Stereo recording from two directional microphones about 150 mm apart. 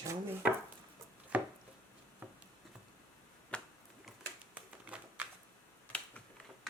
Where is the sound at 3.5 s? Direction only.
10° left (ahead or behind).